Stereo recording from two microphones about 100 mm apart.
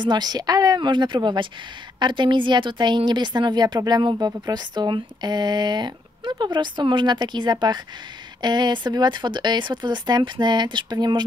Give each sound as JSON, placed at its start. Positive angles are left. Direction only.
{"t": 0.0, "sound": "speech", "side_deg": -45}